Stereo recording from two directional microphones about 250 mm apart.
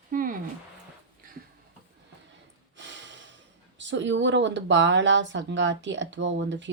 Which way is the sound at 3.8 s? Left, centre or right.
Right.